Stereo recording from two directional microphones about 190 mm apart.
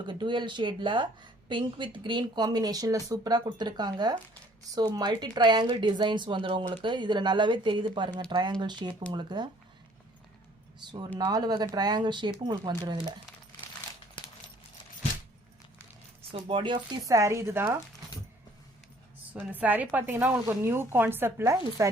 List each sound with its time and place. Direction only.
0.0 s speech: 25° right (ahead or behind)
10.8 s speech: 25° right (ahead or behind)
16.3 s speech: 25° right (ahead or behind); by 17.7 s 10° right (ahead or behind)
19.3 s speech: 10° right (ahead or behind)